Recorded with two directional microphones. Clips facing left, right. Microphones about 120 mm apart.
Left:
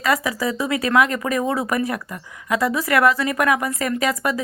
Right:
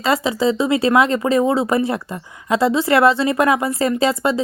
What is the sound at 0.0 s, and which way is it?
Speech, 25° right (ahead or behind).